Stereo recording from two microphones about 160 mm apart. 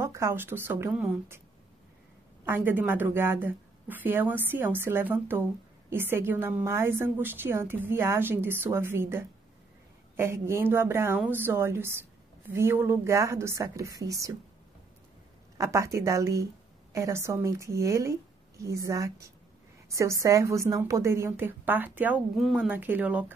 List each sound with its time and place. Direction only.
0.0 s a woman's voice: 15° right (ahead or behind)
2.4 s a woman's voice: 10° right (ahead or behind)
15.5 s a woman's voice: 20° right (ahead or behind)